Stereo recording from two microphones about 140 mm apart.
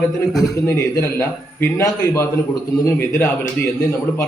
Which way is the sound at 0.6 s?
20° left (ahead or behind).